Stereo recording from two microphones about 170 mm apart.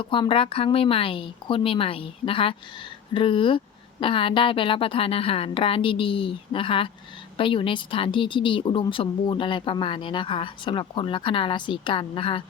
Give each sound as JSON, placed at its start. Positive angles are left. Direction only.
{"t": 0.0, "sound": "a woman's voice", "side_deg": 30}